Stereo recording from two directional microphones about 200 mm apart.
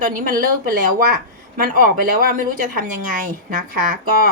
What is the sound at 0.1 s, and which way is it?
Speech, 45° right (ahead or behind).